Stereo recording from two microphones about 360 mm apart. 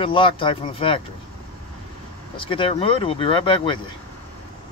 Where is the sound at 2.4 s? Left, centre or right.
Centre.